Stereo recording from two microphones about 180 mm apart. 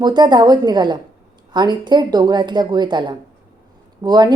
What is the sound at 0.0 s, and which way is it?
A woman's voice, 25° right (ahead or behind).